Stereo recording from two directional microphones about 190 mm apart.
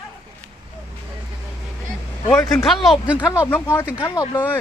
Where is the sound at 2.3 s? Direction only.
5° left (ahead or behind).